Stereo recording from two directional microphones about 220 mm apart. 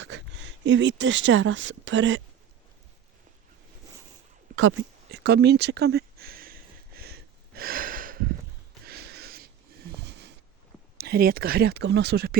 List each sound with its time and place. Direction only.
0.0 s speech: 55° right (ahead or behind)
5.1 s a sound: 50° right (ahead or behind)
10.9 s speech: 45° right (ahead or behind)